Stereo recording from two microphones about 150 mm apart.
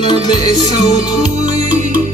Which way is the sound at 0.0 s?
30° left (ahead or behind).